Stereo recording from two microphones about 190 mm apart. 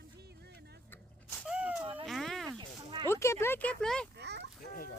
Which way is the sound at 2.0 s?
Centre (ahead or behind).